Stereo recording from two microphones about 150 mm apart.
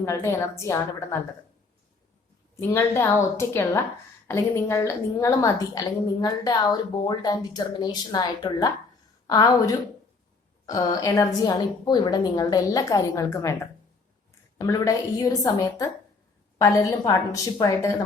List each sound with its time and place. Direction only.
0.0 s a woman's voice: 20° left (ahead or behind)
2.6 s a woman's voice: 20° left (ahead or behind)
14.7 s a woman's voice: 25° left (ahead or behind)